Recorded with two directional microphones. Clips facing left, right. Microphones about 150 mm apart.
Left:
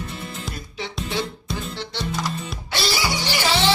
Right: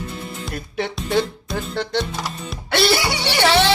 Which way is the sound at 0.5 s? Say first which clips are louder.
Right 6 dB; 55° right (ahead or behind).